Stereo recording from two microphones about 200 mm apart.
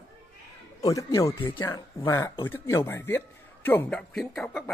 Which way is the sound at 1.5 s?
15° left (ahead or behind).